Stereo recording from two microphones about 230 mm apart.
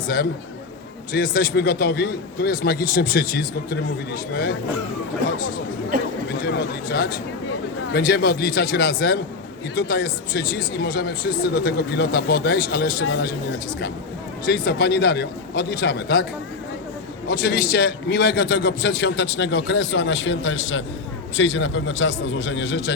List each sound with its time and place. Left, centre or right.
1.1 s a man's voice: left
5.9 s speech: right
6.4 s speech: left
14.4 s speech: left
17.2 s speech: left